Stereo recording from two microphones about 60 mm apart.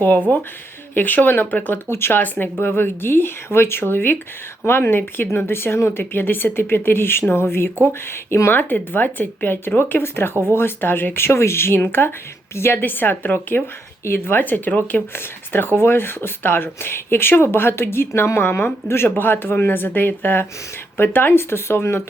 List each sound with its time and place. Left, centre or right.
0.3 s speech: left
1.9 s speech: left
15.1 s speech: left